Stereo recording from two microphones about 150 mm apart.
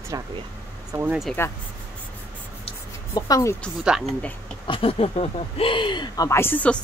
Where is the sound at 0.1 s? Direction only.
25° right (ahead or behind).